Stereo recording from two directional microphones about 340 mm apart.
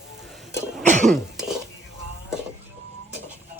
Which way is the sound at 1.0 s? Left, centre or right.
Centre.